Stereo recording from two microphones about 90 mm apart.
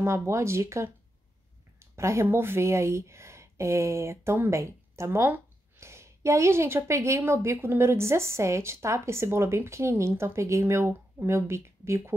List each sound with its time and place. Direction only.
0.3 s speech: 30° right (ahead or behind)